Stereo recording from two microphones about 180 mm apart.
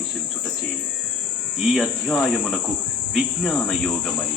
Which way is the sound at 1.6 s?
Centre (ahead or behind).